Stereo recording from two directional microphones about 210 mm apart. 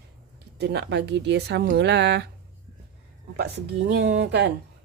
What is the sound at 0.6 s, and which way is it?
Speech, 50° right (ahead or behind).